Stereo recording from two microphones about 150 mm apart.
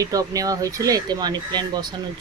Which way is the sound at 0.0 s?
25° right (ahead or behind).